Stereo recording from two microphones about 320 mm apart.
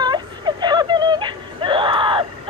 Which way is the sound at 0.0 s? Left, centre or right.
Centre.